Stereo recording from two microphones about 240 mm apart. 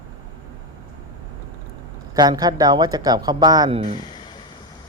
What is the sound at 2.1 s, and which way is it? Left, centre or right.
Speech, centre.